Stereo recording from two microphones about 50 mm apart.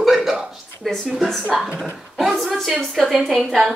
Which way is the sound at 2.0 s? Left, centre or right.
Centre.